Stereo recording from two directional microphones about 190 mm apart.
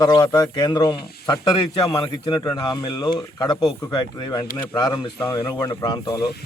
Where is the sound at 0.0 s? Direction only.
20° left (ahead or behind).